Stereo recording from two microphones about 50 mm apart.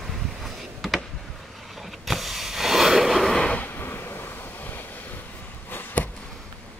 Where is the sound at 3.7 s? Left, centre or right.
Left.